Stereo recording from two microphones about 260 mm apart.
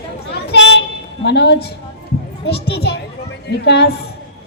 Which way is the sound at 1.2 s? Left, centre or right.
Left.